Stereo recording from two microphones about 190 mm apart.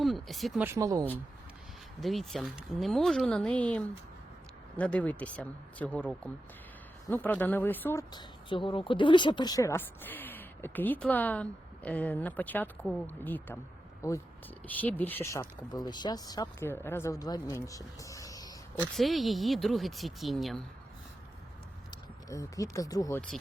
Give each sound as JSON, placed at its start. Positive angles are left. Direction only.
{"t": 0.0, "sound": "speech", "side_deg": 0}
{"t": 0.6, "sound": "speech", "side_deg": -15}
{"t": 2.0, "sound": "speech", "side_deg": 0}
{"t": 8.1, "sound": "speech", "side_deg": 25}
{"t": 18.8, "sound": "speech", "side_deg": 0}
{"t": 22.3, "sound": "speech", "side_deg": 15}